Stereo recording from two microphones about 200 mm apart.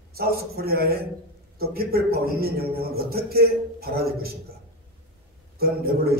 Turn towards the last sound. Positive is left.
turn(degrees=-50)  # may be behind; listen again after turning